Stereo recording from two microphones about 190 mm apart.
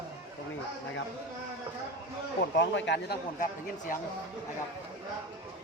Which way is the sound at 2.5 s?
65° left (ahead or behind).